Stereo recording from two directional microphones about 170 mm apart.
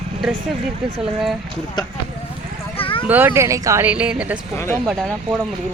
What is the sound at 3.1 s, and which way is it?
Speech, 15° right (ahead or behind).